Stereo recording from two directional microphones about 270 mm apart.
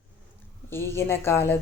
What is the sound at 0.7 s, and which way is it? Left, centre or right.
Speech, centre.